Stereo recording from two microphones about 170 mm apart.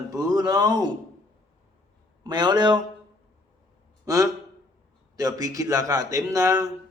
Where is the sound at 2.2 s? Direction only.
25° right (ahead or behind).